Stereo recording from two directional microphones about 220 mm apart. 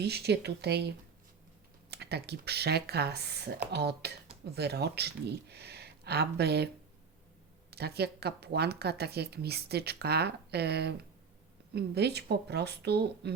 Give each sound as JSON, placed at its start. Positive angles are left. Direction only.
{"t": 0.0, "sound": "speech", "side_deg": -50}
{"t": 1.9, "sound": "speech", "side_deg": -50}
{"t": 7.7, "sound": "speech", "side_deg": -45}